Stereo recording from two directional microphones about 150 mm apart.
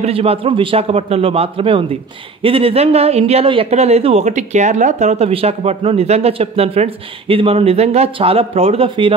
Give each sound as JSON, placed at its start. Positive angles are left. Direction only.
{"t": 0.0, "sound": "a man's voice", "side_deg": -40}